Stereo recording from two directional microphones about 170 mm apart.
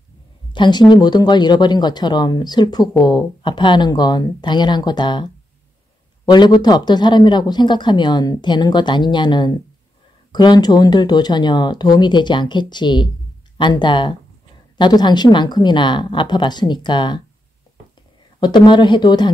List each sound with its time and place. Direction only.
0.5 s speech: 25° left (ahead or behind)
6.3 s speech: 25° left (ahead or behind)
18.4 s speech: 25° left (ahead or behind)